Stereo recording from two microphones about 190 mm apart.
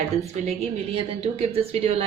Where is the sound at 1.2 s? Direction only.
35° right (ahead or behind).